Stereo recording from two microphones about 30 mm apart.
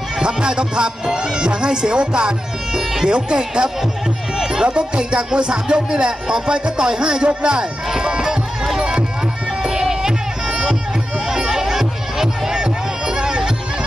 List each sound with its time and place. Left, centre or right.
0.2 s speech: right
8.0 s music: right
8.3 s music: centre